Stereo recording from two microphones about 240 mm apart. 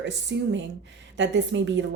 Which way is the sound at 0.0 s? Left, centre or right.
Right.